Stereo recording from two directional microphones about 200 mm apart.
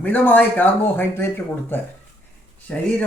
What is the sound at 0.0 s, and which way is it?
A man's voice, 10° left (ahead or behind).